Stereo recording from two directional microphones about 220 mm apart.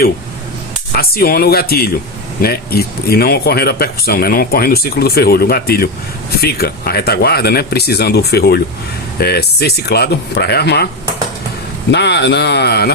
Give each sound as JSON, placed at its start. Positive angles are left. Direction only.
{"t": 0.9, "sound": "speech", "side_deg": 45}
{"t": 11.9, "sound": "speech", "side_deg": 50}